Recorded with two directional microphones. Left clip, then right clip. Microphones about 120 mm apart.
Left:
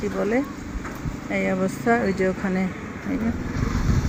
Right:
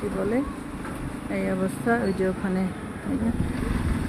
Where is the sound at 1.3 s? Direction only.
5° left (ahead or behind).